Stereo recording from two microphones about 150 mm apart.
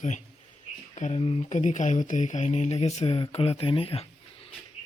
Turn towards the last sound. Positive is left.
turn(degrees=40)  # may be behind; listen again after turning